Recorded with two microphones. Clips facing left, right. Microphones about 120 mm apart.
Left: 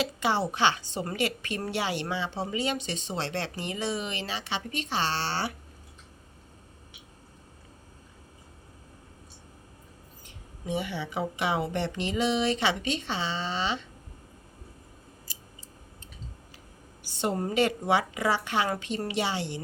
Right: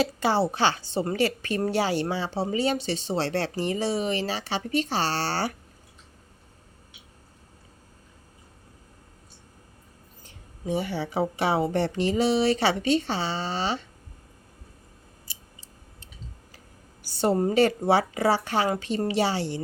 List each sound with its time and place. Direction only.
0.0 s a woman's voice: 35° right (ahead or behind)
10.2 s a woman's voice: 35° right (ahead or behind)
17.2 s a woman's voice: 35° right (ahead or behind)